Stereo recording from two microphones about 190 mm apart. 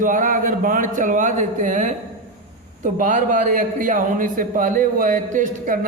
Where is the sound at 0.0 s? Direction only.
45° right (ahead or behind).